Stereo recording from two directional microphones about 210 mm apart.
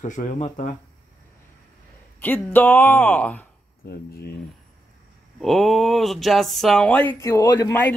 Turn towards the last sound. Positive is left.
turn(degrees=10)  # may be behind; listen again after turning